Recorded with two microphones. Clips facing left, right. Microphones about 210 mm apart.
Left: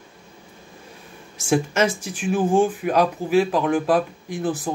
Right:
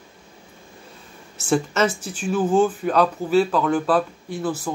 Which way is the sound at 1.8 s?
10° left (ahead or behind).